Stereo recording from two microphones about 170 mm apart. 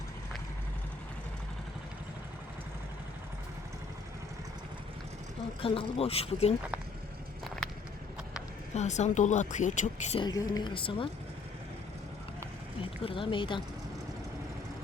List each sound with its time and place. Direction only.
5.6 s speech: 35° left (ahead or behind)
7.4 s a sound: 5° left (ahead or behind)
8.7 s speech: 40° left (ahead or behind)
10.2 s a woman's voice: 25° left (ahead or behind)
12.8 s speech: 30° left (ahead or behind)